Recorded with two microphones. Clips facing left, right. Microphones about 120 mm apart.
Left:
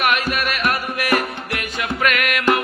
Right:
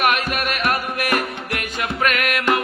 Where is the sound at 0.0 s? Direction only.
45° right (ahead or behind).